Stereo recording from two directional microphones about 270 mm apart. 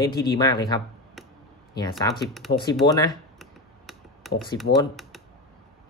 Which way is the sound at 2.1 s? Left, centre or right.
Centre.